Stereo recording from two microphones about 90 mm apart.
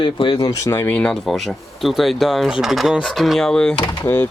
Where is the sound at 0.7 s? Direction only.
20° left (ahead or behind).